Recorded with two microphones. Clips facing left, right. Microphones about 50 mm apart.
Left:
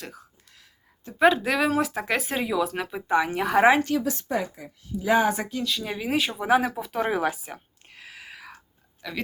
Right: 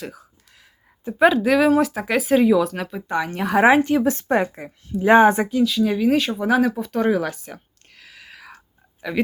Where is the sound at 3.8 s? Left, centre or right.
Right.